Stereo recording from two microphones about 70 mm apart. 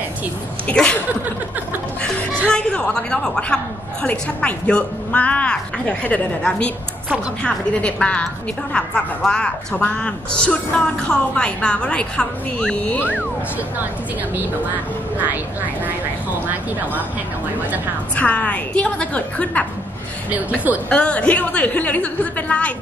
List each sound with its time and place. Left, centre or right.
0.7 s a woman's voice: centre
2.5 s a woman's voice: centre
15.8 s vehicle: right
18.1 s a woman's voice: left
20.9 s a woman's voice: centre